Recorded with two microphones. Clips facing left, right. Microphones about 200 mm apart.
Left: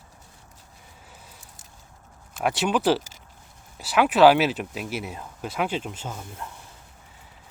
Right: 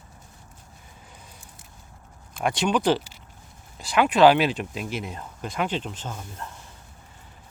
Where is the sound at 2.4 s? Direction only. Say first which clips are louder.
Even; 5° left (ahead or behind).